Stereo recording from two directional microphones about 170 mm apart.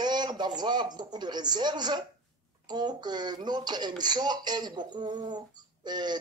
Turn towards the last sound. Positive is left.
turn(degrees=-25)  # may be behind; listen again after turning